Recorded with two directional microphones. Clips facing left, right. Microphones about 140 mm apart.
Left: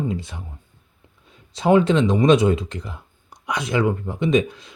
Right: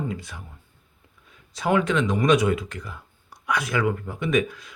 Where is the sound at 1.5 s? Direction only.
25° left (ahead or behind).